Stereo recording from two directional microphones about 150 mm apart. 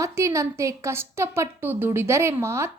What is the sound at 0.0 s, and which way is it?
A woman's voice, 20° right (ahead or behind).